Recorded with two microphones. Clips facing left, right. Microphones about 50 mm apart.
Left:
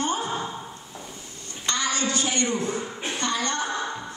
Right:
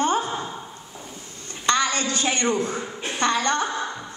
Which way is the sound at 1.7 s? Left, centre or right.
Right.